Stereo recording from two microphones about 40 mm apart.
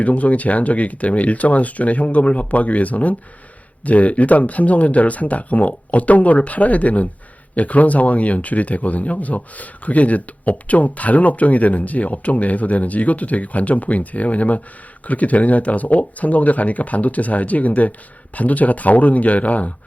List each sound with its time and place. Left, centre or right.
0.0 s speech: left